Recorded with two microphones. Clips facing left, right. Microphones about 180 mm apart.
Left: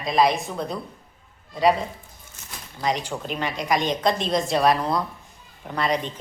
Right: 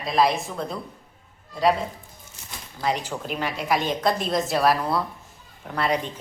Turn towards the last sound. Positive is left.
turn(degrees=-10)  # may be behind; listen again after turning